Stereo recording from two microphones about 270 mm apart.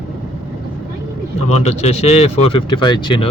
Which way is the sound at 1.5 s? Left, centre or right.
Left.